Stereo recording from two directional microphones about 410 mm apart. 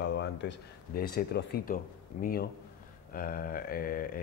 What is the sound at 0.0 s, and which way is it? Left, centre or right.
Speech, left.